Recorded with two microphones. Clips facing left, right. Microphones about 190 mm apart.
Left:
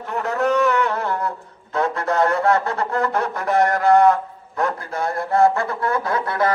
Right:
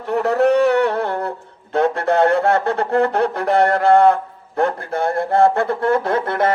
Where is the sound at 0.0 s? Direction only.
65° right (ahead or behind).